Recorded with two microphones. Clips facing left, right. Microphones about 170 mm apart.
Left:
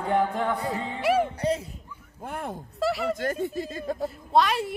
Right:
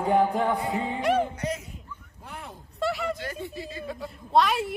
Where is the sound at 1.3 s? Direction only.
30° left (ahead or behind).